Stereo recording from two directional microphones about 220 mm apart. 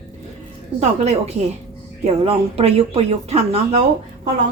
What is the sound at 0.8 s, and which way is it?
A woman's voice, 30° right (ahead or behind).